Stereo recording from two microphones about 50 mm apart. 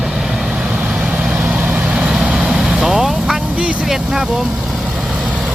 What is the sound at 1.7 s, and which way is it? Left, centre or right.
Vehicle, right.